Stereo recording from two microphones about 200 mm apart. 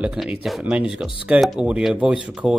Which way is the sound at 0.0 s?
5° right (ahead or behind).